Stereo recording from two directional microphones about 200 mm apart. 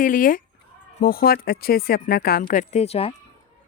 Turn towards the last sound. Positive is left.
turn(degrees=30)  # may be behind; listen again after turning